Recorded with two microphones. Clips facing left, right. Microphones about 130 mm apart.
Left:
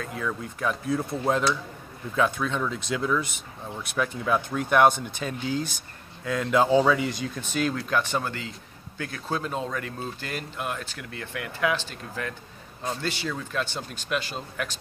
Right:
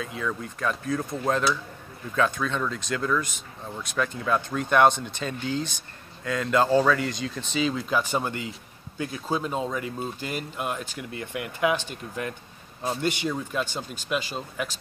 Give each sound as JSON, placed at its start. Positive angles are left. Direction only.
{"t": 0.0, "sound": "speech", "side_deg": 0}
{"t": 8.1, "sound": "speech", "side_deg": -15}
{"t": 14.0, "sound": "speech", "side_deg": -5}